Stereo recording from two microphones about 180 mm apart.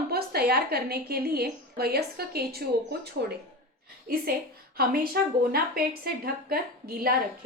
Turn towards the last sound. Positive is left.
turn(degrees=-55)  # may be behind; listen again after turning